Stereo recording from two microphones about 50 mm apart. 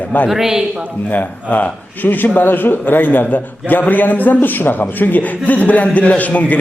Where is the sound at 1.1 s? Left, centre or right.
Left.